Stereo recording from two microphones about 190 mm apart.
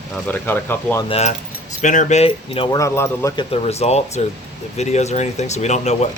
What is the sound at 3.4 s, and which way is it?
Speech, 30° left (ahead or behind).